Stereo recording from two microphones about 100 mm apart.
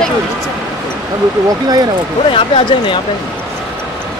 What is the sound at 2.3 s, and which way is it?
Speech, 60° left (ahead or behind).